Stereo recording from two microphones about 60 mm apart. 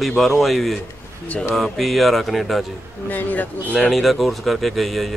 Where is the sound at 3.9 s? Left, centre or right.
Centre.